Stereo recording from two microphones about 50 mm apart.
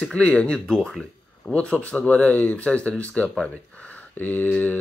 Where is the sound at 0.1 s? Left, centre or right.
Left.